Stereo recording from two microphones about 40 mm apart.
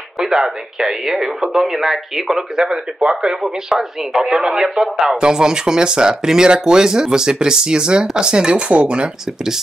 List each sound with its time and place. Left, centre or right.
0.2 s speech: centre
2.5 s speech: centre